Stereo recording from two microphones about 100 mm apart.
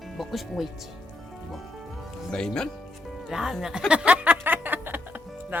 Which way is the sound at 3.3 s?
Centre (ahead or behind).